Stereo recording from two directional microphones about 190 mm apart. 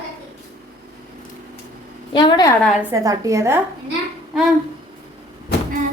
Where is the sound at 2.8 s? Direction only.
15° right (ahead or behind).